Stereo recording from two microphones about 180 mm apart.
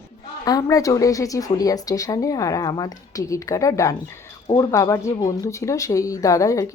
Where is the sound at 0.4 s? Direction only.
20° left (ahead or behind).